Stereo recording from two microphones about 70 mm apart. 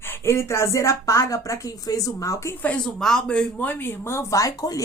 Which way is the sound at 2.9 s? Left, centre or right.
Centre.